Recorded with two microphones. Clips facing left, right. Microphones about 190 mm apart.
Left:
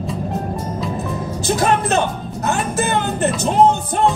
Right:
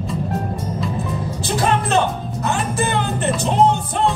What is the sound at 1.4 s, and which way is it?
Speech, 45° left (ahead or behind).